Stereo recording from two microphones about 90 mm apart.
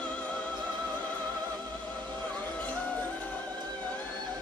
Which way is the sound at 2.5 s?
15° left (ahead or behind).